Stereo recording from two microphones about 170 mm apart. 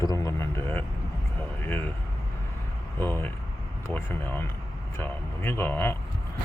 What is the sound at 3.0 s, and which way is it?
Speech, 15° left (ahead or behind).